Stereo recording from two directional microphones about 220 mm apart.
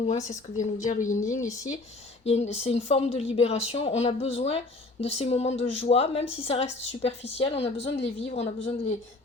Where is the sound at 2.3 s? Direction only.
30° left (ahead or behind).